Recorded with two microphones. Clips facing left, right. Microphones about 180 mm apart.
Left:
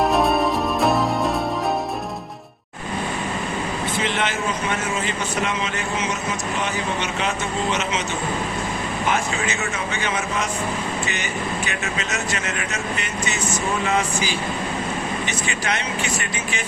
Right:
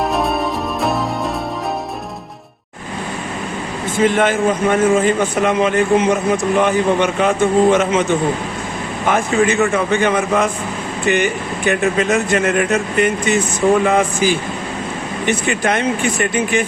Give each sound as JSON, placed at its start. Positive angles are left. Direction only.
{"t": 0.0, "sound": "music", "side_deg": 0}
{"t": 3.9, "sound": "a man's voice", "side_deg": -50}
{"t": 9.0, "sound": "a man's voice", "side_deg": -55}